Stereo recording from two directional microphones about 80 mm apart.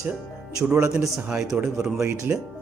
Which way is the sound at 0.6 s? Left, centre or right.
Right.